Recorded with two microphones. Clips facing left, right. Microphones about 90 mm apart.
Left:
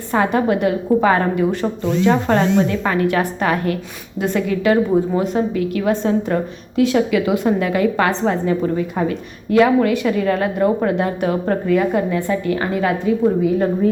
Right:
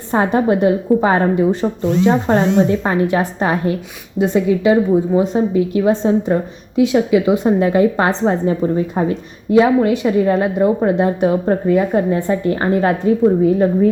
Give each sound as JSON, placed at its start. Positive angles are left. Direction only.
{"t": 0.1, "sound": "a woman's voice", "side_deg": -30}
{"t": 5.2, "sound": "a woman's voice", "side_deg": -25}